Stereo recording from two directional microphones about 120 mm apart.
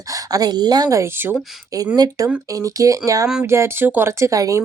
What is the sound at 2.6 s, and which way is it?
A woman's voice, 30° right (ahead or behind).